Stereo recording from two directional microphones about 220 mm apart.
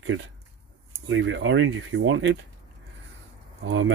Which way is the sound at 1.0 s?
60° right (ahead or behind).